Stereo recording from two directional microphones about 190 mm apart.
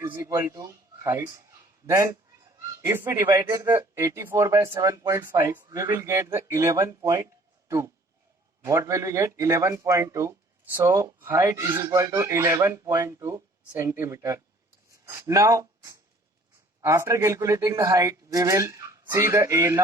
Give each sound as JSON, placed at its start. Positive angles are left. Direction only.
{"t": 0.0, "sound": "speech", "side_deg": -15}
{"t": 8.6, "sound": "speech", "side_deg": -15}